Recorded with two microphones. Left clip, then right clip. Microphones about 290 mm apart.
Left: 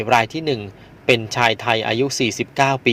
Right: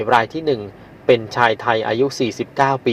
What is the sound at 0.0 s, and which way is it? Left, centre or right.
Speech, left.